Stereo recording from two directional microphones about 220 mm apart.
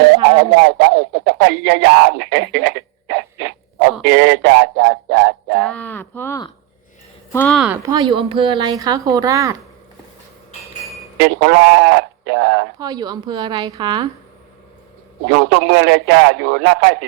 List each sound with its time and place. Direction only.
0.6 s speech: 50° right (ahead or behind)
5.5 s speech: 5° left (ahead or behind)
7.9 s speech: 20° right (ahead or behind)
11.2 s speech: 50° right (ahead or behind)
12.8 s a woman's voice: 20° right (ahead or behind)
15.3 s speech: 50° right (ahead or behind)